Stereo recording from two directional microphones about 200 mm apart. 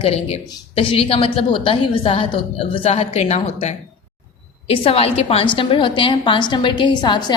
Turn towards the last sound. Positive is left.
turn(degrees=20)  # may be behind; listen again after turning